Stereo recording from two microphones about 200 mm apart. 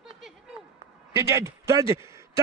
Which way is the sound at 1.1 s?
15° right (ahead or behind).